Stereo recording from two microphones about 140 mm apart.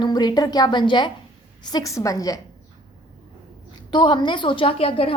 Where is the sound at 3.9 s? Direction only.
35° left (ahead or behind).